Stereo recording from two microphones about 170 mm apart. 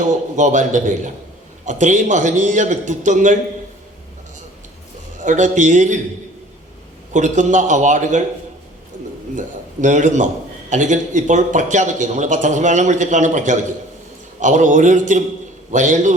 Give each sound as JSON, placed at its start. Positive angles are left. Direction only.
{"t": 0.3, "sound": "a man's voice", "side_deg": -45}
{"t": 5.2, "sound": "a man's voice", "side_deg": -45}
{"t": 7.1, "sound": "a man's voice", "side_deg": -45}
{"t": 9.8, "sound": "a man's voice", "side_deg": -45}